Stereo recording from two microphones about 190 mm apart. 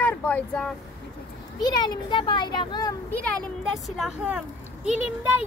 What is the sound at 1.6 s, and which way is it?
A child's voice, 20° left (ahead or behind).